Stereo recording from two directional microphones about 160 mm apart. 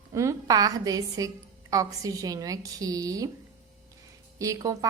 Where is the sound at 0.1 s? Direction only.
20° right (ahead or behind).